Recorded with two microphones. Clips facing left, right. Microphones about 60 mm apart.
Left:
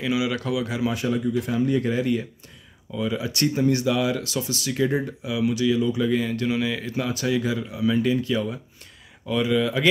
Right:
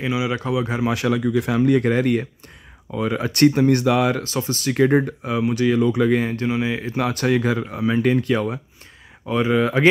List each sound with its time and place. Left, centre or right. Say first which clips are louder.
0.0 s speech: right 1 dB; right
0.8 s speech: right 3 dB; right
4.2 s speech: right 3 dB; right
7.0 s speech: right 5 dB; right
9.2 s speech: right 3 dB; right